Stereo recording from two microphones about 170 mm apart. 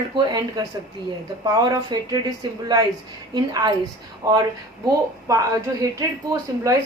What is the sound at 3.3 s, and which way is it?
A woman's voice, 25° right (ahead or behind).